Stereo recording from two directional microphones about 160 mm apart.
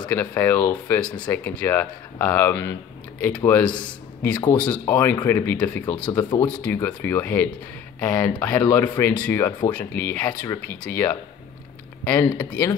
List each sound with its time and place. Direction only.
0.1 s speech: 15° left (ahead or behind)